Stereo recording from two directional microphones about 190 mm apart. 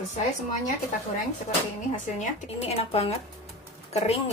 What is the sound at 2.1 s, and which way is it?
Speech, 30° left (ahead or behind).